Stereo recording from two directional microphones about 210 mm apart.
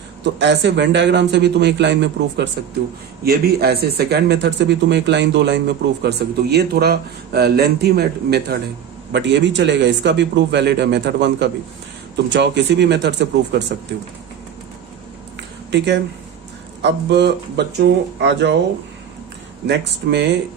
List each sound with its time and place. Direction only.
0.3 s a man's voice: 55° right (ahead or behind)
15.4 s a sound: 55° right (ahead or behind)
16.8 s a man's voice: 55° right (ahead or behind)
19.6 s speech: 55° right (ahead or behind)